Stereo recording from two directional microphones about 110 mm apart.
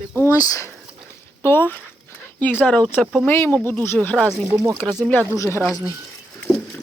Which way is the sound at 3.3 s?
20° left (ahead or behind).